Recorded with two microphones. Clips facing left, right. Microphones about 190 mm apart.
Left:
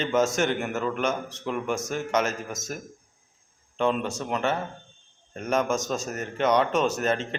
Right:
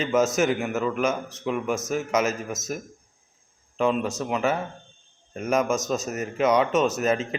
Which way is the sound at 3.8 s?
5° right (ahead or behind).